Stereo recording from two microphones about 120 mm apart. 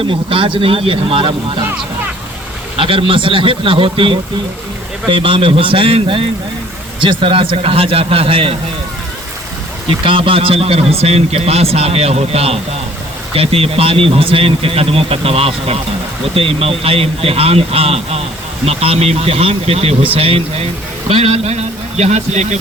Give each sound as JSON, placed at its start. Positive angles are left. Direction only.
{"t": 0.0, "sound": "speech", "side_deg": -50}
{"t": 2.7, "sound": "speech", "side_deg": -50}
{"t": 10.0, "sound": "a man's voice", "side_deg": -45}